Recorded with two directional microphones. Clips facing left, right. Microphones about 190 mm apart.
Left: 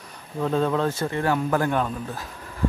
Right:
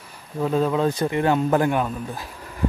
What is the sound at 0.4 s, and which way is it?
Speech, 5° right (ahead or behind).